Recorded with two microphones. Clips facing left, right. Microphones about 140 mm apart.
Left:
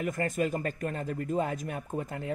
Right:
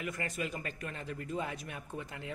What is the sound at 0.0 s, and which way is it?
Speech, 45° left (ahead or behind).